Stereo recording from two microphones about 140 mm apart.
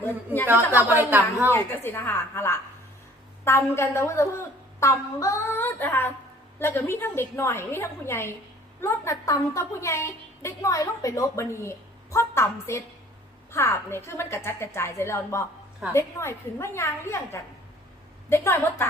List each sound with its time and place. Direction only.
0.4 s speech: 15° right (ahead or behind)
1.5 s a woman's voice: 15° left (ahead or behind)